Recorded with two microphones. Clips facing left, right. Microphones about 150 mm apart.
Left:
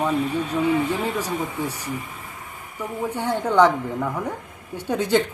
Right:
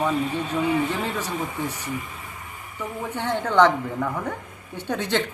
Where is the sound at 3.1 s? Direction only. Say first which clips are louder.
Left 2 dB; 10° left (ahead or behind).